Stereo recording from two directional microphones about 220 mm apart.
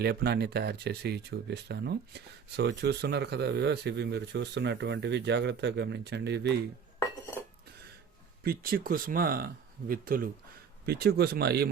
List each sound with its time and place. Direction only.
0.0 s speech: 45° right (ahead or behind)
8.4 s speech: 40° right (ahead or behind)